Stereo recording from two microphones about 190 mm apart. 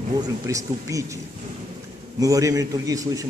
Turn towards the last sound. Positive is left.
turn(degrees=-20)  # may be behind; listen again after turning